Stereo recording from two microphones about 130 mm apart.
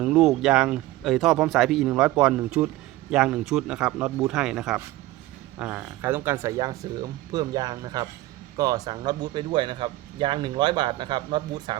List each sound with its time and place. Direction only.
0.0 s speech: 5° right (ahead or behind); by 11.8 s 35° right (ahead or behind)